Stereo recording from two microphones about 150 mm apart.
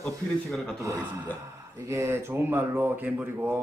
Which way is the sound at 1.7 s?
20° right (ahead or behind).